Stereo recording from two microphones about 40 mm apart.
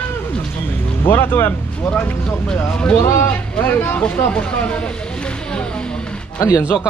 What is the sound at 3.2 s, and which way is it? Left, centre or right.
Speech, left.